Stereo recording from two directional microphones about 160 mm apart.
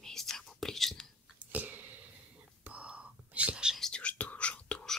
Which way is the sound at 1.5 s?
10° right (ahead or behind).